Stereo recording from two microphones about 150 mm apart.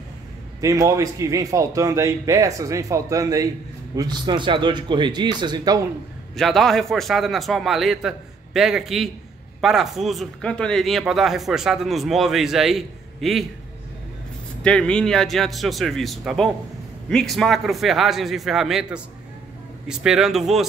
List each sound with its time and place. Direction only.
0.6 s a man's voice: 20° right (ahead or behind)
6.3 s speech: centre (ahead or behind)
14.6 s speech: 5° left (ahead or behind)